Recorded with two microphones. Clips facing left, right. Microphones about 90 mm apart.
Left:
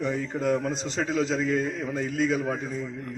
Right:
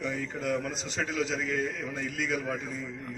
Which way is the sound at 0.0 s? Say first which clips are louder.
Left 6 dB; 30° left (ahead or behind).